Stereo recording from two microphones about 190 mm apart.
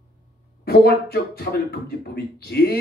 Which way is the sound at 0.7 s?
55° left (ahead or behind).